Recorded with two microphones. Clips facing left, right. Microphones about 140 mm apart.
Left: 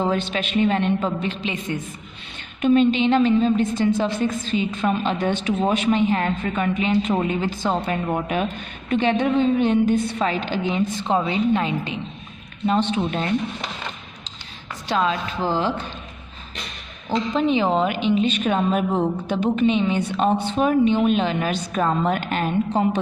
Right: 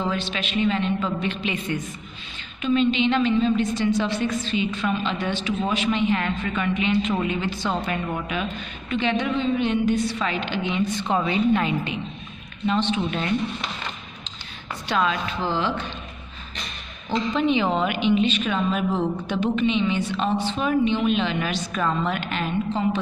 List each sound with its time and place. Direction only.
0.0 s a woman's voice: 45° left (ahead or behind)
1.2 s a woman's voice: 30° left (ahead or behind)
2.6 s a woman's voice: 50° left (ahead or behind)
5.7 s a woman's voice: 45° left (ahead or behind)
11.1 s a woman's voice: 30° left (ahead or behind)
12.6 s a woman's voice: 40° left (ahead or behind)
14.9 s a woman's voice: 35° left (ahead or behind)
17.3 s a woman's voice: 35° left (ahead or behind)